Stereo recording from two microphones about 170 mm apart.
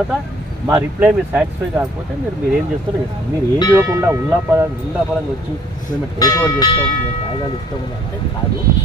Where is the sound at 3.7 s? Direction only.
15° right (ahead or behind).